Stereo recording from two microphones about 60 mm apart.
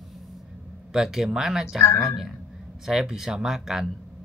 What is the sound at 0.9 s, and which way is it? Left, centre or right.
Speech, centre.